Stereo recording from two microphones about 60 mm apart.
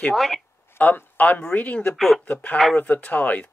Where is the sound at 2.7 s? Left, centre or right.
Left.